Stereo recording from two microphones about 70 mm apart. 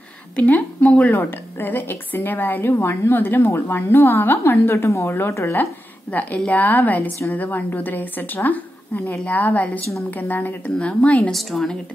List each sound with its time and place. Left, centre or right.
0.4 s a woman's voice: left
4.8 s a woman's voice: left
6.1 s a woman's voice: left
11.3 s a woman's voice: centre